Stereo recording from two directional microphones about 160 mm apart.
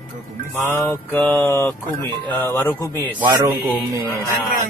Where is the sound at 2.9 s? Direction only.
25° right (ahead or behind).